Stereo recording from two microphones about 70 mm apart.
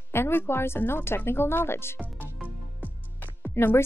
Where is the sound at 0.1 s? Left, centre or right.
Left.